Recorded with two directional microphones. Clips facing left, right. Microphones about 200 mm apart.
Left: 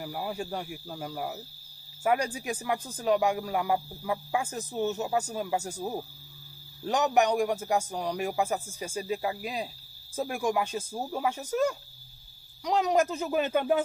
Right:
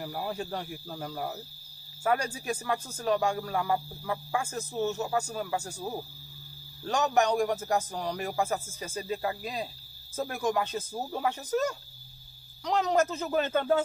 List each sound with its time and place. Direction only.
0.0 s speech: 5° left (ahead or behind)
2.0 s speech: 15° left (ahead or behind)